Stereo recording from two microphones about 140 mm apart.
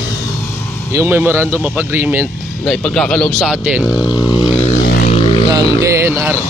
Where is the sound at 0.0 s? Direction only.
25° left (ahead or behind).